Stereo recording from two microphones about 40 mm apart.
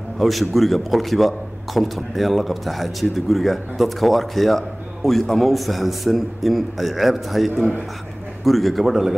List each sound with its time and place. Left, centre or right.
0.2 s a man's voice: centre